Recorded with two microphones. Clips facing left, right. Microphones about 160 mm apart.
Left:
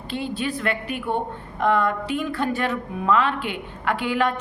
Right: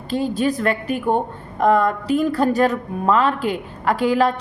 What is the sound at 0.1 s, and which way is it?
A woman's voice, 40° right (ahead or behind).